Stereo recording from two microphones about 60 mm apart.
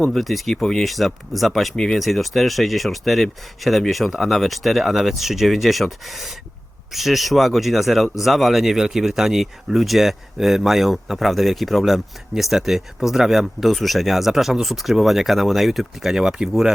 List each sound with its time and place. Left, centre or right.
0.0 s speech: centre
0.9 s speech: centre